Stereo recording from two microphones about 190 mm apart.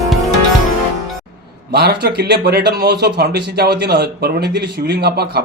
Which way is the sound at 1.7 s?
60° right (ahead or behind).